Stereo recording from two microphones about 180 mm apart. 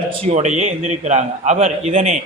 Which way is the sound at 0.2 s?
40° right (ahead or behind).